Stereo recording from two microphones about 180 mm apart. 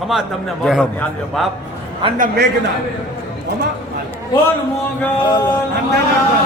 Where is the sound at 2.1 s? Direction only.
50° right (ahead or behind).